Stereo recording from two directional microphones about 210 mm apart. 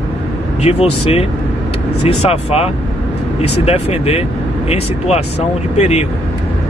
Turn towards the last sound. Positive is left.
turn(degrees=30)  # may be behind; listen again after turning